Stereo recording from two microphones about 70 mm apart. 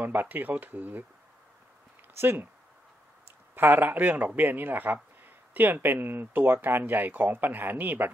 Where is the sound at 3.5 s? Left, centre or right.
Right.